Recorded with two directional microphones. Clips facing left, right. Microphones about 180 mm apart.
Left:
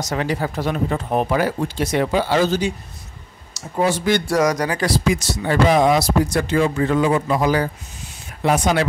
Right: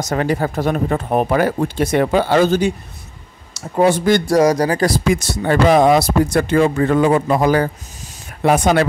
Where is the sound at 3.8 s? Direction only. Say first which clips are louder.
Right 5 dB; 50° right (ahead or behind).